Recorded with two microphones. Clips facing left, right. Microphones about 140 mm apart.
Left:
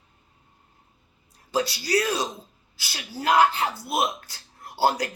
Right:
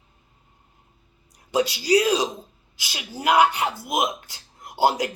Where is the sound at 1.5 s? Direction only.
15° right (ahead or behind).